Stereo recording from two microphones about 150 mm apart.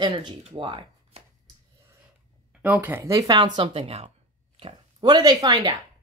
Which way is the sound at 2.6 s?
10° right (ahead or behind).